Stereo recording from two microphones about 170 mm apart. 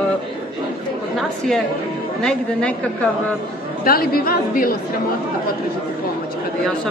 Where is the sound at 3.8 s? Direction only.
60° left (ahead or behind).